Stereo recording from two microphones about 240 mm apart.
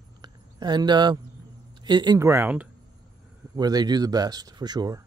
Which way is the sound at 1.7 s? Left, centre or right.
Centre.